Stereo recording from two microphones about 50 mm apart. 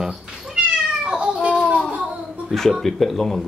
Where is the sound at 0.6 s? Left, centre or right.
Right.